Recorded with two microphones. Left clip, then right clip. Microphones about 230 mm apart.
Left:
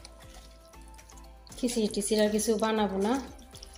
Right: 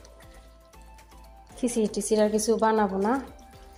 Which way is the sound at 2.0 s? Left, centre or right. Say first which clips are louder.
Right 4 dB; centre.